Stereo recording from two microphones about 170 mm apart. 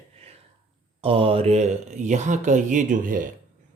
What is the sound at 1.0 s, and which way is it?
Speech, 35° right (ahead or behind).